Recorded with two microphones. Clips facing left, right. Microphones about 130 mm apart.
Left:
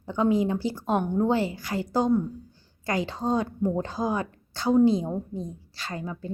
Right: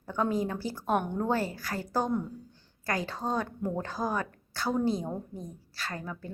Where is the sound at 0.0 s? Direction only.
15° left (ahead or behind).